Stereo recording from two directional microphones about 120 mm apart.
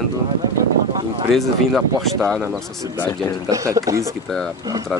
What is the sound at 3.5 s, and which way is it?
Speech, 30° right (ahead or behind).